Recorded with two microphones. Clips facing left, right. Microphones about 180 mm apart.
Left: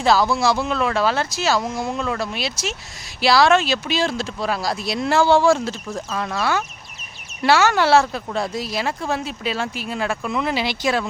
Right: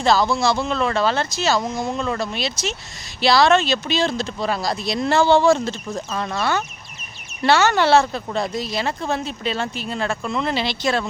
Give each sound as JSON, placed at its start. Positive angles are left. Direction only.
{"t": 0.0, "sound": "speech", "side_deg": 10}